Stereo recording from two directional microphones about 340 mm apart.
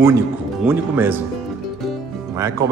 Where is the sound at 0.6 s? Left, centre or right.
Centre.